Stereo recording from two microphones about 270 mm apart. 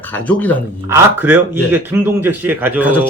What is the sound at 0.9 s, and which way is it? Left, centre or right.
A man's voice, centre.